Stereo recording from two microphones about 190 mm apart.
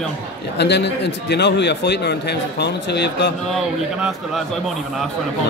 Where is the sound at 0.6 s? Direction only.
65° left (ahead or behind).